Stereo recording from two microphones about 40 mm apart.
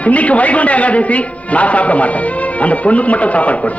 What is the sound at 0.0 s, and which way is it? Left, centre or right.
A man's voice, left.